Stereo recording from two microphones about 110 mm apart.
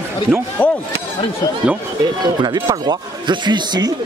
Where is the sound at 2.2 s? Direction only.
40° right (ahead or behind).